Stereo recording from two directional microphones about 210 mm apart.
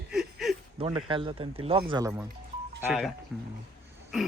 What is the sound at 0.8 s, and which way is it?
Speech, 20° right (ahead or behind).